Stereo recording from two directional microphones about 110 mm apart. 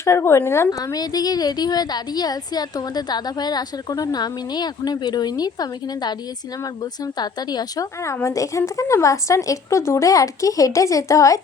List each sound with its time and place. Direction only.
0.0 s a woman's voice: 25° left (ahead or behind)
0.7 s a woman's voice: 35° left (ahead or behind)
8.0 s a woman's voice: 25° left (ahead or behind)